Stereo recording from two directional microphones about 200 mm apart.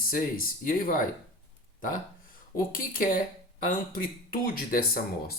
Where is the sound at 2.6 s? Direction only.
45° left (ahead or behind).